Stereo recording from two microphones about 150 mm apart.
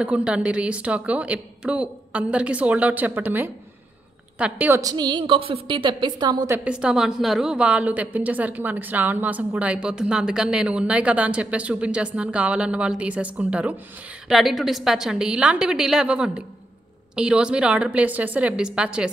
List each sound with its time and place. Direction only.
0.0 s a woman's voice: 5° right (ahead or behind); by 6.5 s 30° right (ahead or behind)
6.5 s a woman's voice: 10° right (ahead or behind)